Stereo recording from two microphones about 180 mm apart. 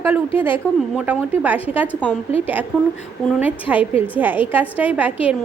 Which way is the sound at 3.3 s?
5° right (ahead or behind).